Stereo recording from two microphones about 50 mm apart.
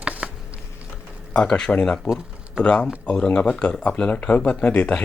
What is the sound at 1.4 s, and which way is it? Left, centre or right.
Speech, centre.